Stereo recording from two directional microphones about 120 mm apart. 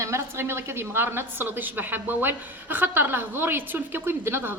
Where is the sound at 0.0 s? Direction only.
20° right (ahead or behind).